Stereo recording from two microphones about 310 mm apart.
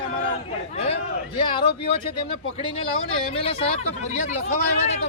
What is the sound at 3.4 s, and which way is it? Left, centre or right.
Speech, centre.